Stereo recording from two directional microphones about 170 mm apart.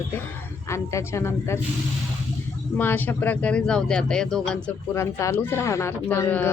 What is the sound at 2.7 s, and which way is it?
Speech, 10° left (ahead or behind).